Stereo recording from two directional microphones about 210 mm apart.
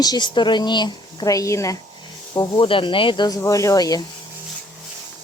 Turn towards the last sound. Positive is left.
turn(degrees=15)  # may be behind; listen again after turning